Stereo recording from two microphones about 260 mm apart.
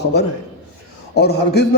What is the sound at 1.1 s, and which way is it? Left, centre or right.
Speech, left.